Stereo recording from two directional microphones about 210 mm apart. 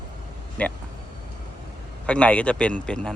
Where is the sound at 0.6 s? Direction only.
5° left (ahead or behind).